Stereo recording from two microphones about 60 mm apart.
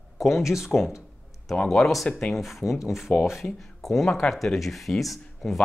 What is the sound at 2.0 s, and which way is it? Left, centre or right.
Speech, centre.